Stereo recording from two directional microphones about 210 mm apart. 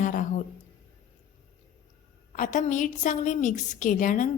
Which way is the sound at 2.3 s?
35° left (ahead or behind).